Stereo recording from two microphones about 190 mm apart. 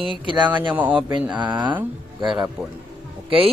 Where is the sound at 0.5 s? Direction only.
10° right (ahead or behind).